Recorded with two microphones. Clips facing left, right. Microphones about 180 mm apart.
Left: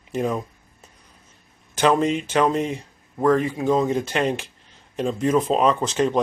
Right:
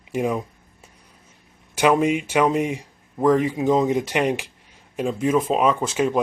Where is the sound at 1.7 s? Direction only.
10° right (ahead or behind).